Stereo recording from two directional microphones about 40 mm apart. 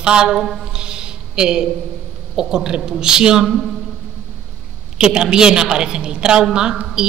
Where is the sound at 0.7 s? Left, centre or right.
Right.